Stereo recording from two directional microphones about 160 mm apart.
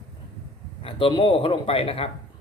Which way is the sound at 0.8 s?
35° left (ahead or behind).